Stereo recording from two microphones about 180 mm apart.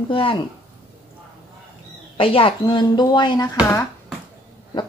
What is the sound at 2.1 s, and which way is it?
A woman's voice, 30° left (ahead or behind).